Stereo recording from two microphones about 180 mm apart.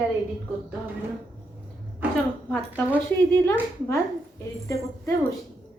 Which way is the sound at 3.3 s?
15° left (ahead or behind).